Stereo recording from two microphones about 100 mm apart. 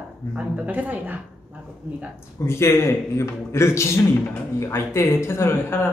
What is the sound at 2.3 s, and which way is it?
A man's voice, 25° left (ahead or behind).